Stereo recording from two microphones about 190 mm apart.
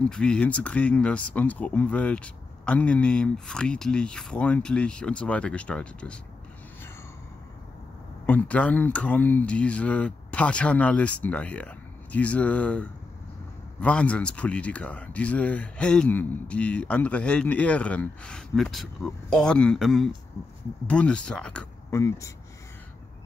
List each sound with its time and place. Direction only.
0.1 s speech: 5° left (ahead or behind)
8.3 s speech: 10° left (ahead or behind)
20.4 s speech: 15° left (ahead or behind)
21.9 s speech: 15° left (ahead or behind)